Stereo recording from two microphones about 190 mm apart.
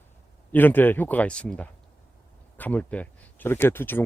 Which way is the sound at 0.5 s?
10° left (ahead or behind).